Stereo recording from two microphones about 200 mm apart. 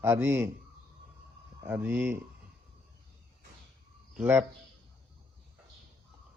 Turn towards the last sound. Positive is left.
turn(degrees=-10)  # may be behind; listen again after turning